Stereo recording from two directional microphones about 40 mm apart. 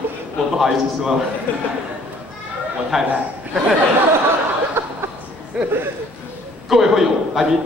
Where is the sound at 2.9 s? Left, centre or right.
Centre.